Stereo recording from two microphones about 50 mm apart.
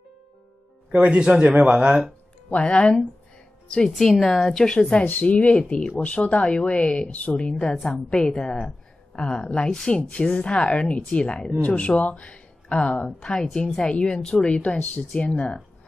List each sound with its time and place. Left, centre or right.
0.9 s speech: right
2.5 s a woman's voice: left
4.2 s a woman's voice: centre
4.7 s a woman's voice: left
13.3 s a woman's voice: centre